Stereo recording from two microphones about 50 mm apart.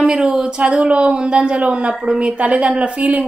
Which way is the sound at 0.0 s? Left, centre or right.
Centre.